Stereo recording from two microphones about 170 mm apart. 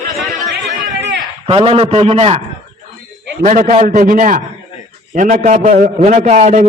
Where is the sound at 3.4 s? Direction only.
50° right (ahead or behind).